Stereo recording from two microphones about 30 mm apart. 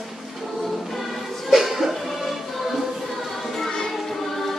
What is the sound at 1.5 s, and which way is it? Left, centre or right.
Music, centre.